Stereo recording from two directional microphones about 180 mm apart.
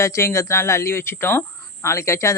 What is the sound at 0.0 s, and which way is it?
Speech, 15° left (ahead or behind).